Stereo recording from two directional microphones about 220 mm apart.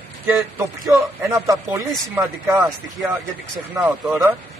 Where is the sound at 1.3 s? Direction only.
15° right (ahead or behind).